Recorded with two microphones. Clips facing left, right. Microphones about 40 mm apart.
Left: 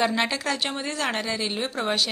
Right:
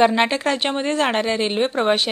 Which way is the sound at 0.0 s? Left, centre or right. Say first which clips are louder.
Right 7 dB; right.